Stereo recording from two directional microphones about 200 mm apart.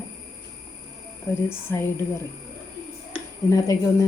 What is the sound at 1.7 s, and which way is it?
Speech, 15° left (ahead or behind).